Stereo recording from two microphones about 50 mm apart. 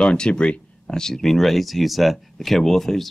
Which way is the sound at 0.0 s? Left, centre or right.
Centre.